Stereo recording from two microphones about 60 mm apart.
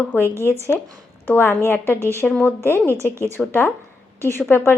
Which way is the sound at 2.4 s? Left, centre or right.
Left.